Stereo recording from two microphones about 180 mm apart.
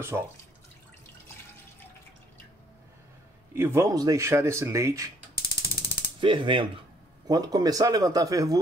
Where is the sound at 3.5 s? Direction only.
15° right (ahead or behind).